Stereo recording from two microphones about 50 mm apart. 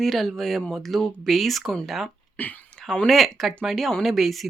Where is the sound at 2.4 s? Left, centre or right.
Left.